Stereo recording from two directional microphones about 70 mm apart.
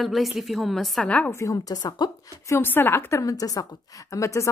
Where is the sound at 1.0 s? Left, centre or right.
Centre.